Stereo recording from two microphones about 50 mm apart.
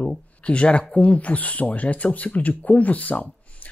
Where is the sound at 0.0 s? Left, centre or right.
Left.